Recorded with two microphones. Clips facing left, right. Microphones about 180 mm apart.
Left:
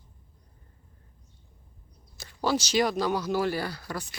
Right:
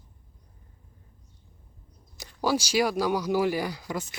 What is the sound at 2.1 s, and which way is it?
Speech, 15° right (ahead or behind).